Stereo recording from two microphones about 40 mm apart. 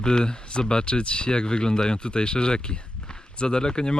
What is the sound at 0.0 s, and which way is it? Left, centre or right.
Speech, centre.